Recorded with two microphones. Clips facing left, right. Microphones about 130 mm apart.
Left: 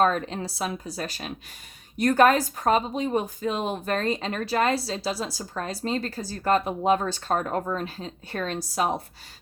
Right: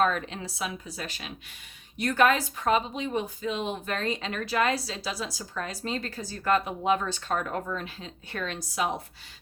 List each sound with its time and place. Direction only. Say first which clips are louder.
0.0 s a woman's voice: left 3 dB; 40° left (ahead or behind)